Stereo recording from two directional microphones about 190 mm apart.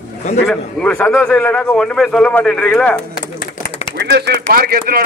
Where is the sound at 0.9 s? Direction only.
10° left (ahead or behind).